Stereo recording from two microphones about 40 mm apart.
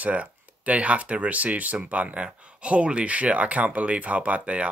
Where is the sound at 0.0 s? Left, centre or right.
Right.